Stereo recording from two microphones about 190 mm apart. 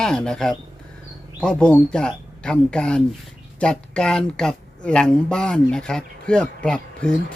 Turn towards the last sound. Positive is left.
turn(degrees=5)  # may be behind; listen again after turning